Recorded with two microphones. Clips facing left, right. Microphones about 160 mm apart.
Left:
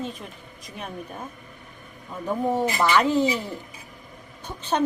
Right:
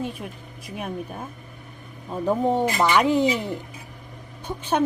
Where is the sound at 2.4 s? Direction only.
20° right (ahead or behind).